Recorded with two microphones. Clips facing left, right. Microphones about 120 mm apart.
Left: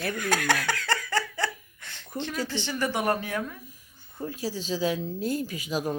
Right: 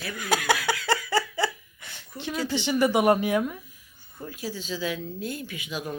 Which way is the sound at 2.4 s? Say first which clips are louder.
Right 8 dB; 15° right (ahead or behind).